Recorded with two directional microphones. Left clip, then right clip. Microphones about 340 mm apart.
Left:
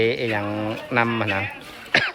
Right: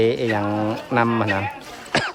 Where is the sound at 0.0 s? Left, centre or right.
Centre.